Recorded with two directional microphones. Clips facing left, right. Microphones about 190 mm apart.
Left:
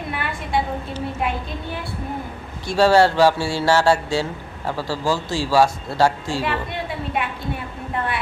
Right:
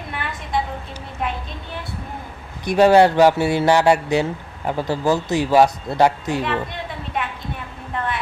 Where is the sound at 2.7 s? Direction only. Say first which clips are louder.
Right 2 dB; 20° right (ahead or behind).